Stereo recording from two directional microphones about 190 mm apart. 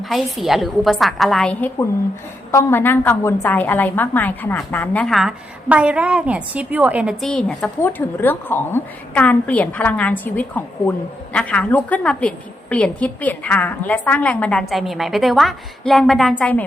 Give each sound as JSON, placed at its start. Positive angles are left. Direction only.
{"t": 0.1, "sound": "a woman's voice", "side_deg": 0}